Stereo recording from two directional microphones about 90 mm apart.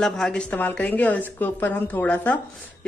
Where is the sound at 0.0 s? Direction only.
10° left (ahead or behind).